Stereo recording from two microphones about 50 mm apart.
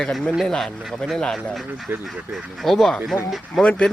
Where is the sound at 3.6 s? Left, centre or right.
Left.